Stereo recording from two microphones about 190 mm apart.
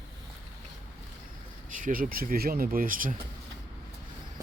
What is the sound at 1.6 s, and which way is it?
Speech, 45° right (ahead or behind).